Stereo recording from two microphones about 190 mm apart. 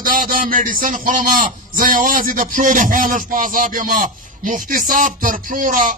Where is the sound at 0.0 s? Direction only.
45° right (ahead or behind).